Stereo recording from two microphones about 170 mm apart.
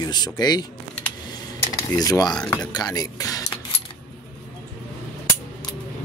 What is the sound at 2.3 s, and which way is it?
Speech, 5° left (ahead or behind).